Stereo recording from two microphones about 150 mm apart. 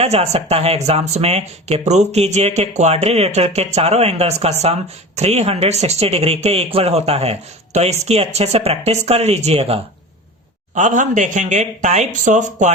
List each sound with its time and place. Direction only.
0.0 s speech: 45° right (ahead or behind)
10.8 s speech: 55° right (ahead or behind)